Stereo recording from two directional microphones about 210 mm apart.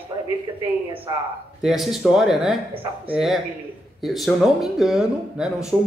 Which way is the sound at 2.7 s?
25° right (ahead or behind).